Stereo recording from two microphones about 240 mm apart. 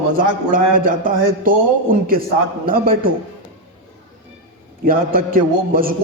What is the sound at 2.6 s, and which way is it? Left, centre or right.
Speech, right.